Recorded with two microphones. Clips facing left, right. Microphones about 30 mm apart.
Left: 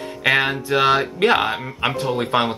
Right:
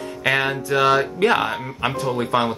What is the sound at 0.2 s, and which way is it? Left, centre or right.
Speech, centre.